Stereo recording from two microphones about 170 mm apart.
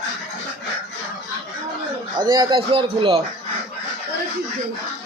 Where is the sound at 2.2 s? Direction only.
25° right (ahead or behind).